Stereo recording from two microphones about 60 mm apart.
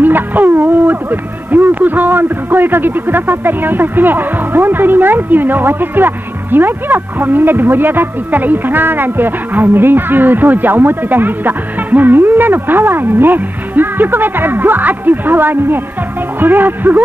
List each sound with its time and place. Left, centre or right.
0.0 s speech: right